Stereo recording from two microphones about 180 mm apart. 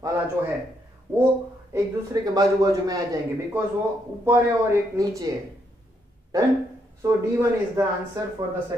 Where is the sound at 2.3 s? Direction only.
20° right (ahead or behind).